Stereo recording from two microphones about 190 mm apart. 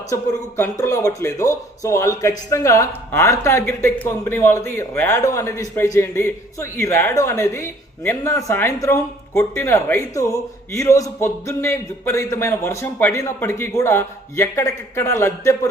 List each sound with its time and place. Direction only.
0.1 s speech: 15° left (ahead or behind)